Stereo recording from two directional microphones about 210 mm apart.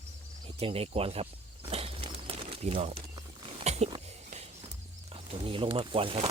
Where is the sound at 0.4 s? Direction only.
30° right (ahead or behind).